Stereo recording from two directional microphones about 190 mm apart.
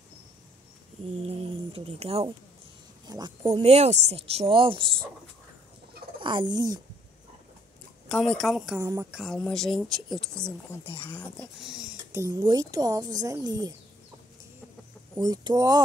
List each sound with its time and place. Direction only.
1.2 s speech: 30° right (ahead or behind)
6.2 s speech: 25° right (ahead or behind)
8.1 s speech: centre (ahead or behind)
8.7 s speech: 15° right (ahead or behind)
9.1 s speech: centre (ahead or behind)
12.1 s speech: 15° right (ahead or behind)
15.1 s speech: 20° right (ahead or behind)